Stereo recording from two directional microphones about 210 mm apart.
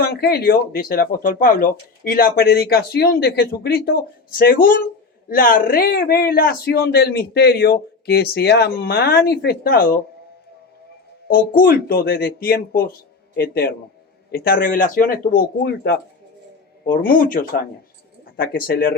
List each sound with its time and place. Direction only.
0.0 s speech: 50° left (ahead or behind)
11.3 s speech: 45° left (ahead or behind)